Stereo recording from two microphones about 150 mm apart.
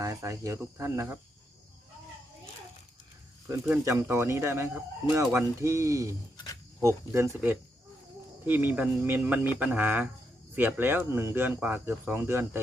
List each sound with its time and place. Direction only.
0.0 s cricket: 20° right (ahead or behind)
0.6 s speech: 15° right (ahead or behind)
3.7 s speech: 15° right (ahead or behind)
6.3 s a sound: 25° left (ahead or behind)
6.7 s speech: 15° right (ahead or behind)